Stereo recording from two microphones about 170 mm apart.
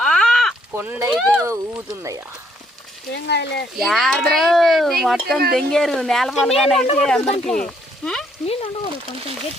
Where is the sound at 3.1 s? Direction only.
85° left.